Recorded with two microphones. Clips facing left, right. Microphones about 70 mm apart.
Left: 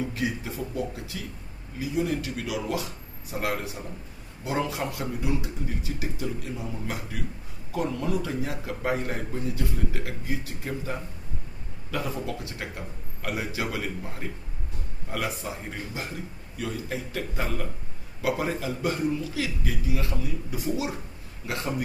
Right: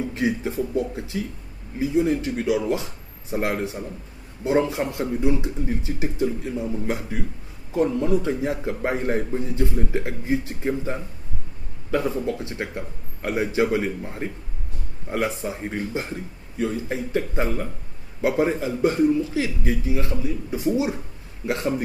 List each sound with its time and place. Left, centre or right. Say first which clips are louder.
0.1 s a man's voice: right 6 dB; right